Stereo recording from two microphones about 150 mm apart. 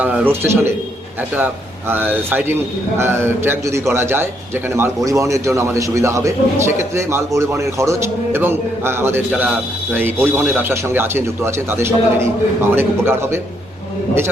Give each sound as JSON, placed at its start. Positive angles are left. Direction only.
{"t": 0.0, "sound": "a man's voice", "side_deg": -10}
{"t": 1.9, "sound": "a man's voice", "side_deg": -15}